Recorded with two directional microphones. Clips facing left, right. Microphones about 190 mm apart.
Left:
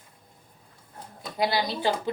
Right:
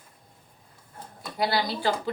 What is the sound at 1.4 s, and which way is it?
Speech, 20° left (ahead or behind).